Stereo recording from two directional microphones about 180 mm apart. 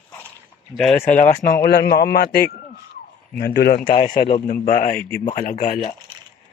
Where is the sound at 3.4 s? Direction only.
60° left (ahead or behind).